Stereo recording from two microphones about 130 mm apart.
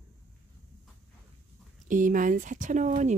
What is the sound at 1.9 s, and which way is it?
Speech, 85° right.